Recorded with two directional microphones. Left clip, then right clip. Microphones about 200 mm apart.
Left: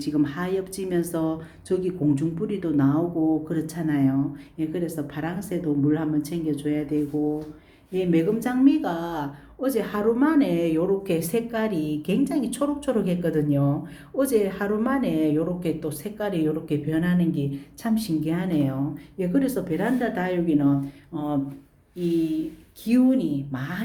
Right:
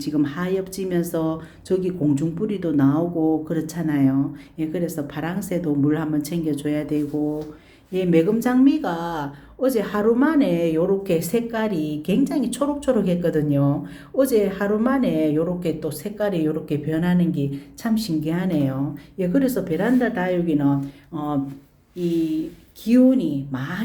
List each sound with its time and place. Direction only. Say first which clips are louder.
0.0 s speech: right 2 dB; 10° right (ahead or behind)